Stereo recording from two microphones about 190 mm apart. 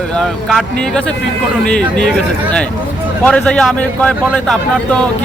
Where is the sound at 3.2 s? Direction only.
5° left (ahead or behind).